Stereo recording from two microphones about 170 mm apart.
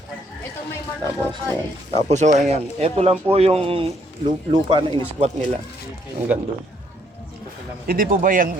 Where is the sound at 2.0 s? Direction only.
45° right (ahead or behind).